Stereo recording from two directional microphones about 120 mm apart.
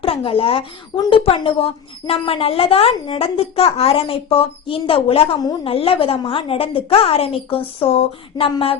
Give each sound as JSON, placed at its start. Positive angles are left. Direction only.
{"t": 0.0, "sound": "a woman's voice", "side_deg": 50}